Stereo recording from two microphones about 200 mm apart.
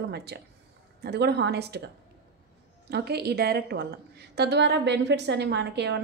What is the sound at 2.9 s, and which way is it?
Speech, 55° right (ahead or behind).